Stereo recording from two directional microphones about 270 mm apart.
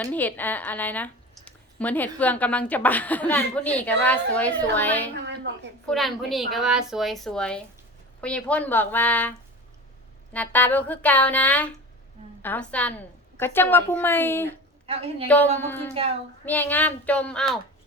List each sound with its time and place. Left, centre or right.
0.0 s speech: centre
5.2 s a sound: right
5.8 s speech: centre
10.3 s a woman's voice: centre
14.8 s a woman's voice: right
15.3 s a woman's voice: centre